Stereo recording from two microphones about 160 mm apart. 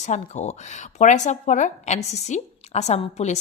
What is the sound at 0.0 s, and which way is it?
Speech, 45° left (ahead or behind).